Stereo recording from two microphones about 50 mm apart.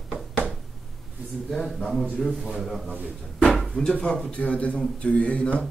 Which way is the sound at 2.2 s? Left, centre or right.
Centre.